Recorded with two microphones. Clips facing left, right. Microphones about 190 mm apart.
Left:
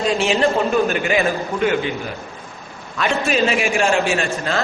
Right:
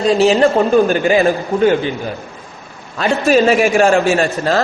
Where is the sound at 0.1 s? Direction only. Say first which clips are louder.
Right 8 dB; 35° right (ahead or behind).